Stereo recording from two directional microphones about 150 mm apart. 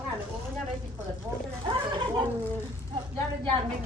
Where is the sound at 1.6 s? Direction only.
35° right (ahead or behind).